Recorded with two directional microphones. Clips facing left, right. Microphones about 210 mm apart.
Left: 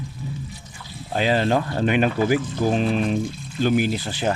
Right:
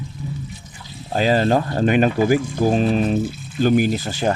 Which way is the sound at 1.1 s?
40° right (ahead or behind).